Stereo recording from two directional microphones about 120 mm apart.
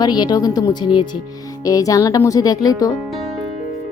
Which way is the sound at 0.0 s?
35° left (ahead or behind).